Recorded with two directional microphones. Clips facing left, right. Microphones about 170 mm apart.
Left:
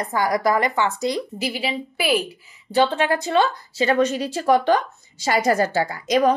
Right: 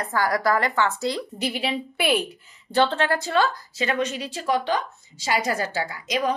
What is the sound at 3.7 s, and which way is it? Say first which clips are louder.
Speech: left 7 dB; 35° left (ahead or behind).